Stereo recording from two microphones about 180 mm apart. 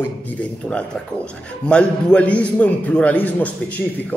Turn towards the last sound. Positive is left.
turn(degrees=10)  # may be behind; listen again after turning